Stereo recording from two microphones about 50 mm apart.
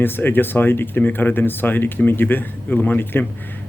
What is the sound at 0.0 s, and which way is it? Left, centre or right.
Speech, left.